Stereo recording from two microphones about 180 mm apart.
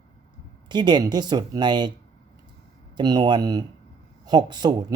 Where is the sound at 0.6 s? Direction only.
25° right (ahead or behind).